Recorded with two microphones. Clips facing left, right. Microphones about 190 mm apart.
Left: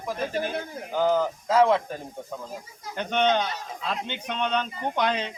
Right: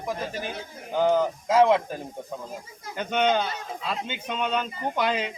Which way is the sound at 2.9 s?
5° right (ahead or behind).